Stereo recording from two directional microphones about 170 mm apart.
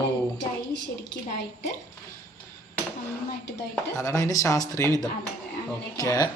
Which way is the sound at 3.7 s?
20° left (ahead or behind).